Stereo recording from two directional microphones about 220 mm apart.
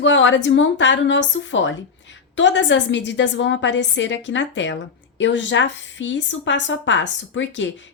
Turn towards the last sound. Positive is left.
turn(degrees=55)  # may be behind; listen again after turning